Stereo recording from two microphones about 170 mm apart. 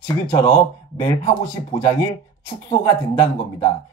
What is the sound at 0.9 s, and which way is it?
Speech, 20° left (ahead or behind).